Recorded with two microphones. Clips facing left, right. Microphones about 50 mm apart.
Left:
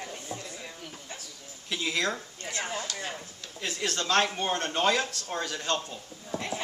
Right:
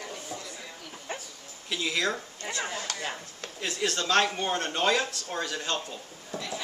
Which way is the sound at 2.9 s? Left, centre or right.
Right.